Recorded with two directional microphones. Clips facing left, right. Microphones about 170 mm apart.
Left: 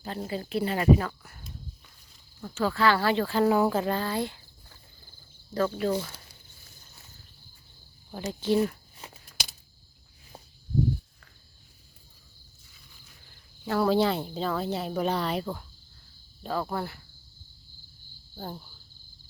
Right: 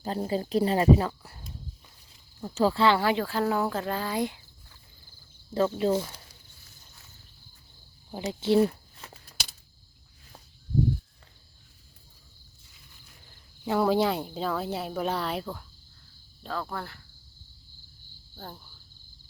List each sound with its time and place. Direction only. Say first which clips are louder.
0.0 s speech: right 4 dB; 35° right (ahead or behind); by 3.4 s 10° right (ahead or behind)
3.4 s speech: left 7 dB; 5° left (ahead or behind)
4.0 s speech: right 1 dB; 15° right (ahead or behind)
5.5 s speech: right 2 dB; 25° right (ahead or behind)
8.1 s speech: right 2 dB; 20° right (ahead or behind)
13.7 s speech: even; 15° right (ahead or behind)
16.4 s speech: left 4 dB; 10° left (ahead or behind)
18.3 s speech: left 5 dB; 15° left (ahead or behind)